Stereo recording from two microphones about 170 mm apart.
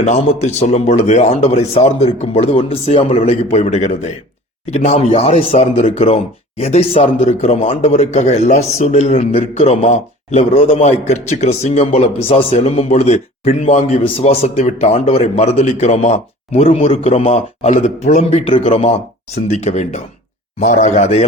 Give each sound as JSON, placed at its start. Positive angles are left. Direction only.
{"t": 0.0, "sound": "speech", "side_deg": 40}